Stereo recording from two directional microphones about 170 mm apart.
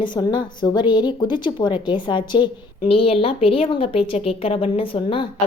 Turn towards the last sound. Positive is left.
turn(degrees=30)  # may be behind; listen again after turning